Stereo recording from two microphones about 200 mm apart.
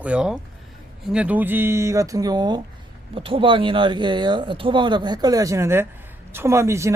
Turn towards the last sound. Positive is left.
turn(degrees=-15)  # may be behind; listen again after turning